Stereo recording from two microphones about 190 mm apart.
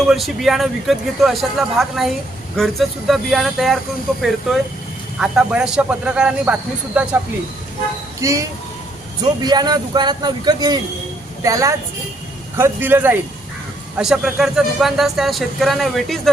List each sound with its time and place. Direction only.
0.0 s speech: centre (ahead or behind)
8.2 s a man's voice: 15° right (ahead or behind); by 16.3 s centre (ahead or behind)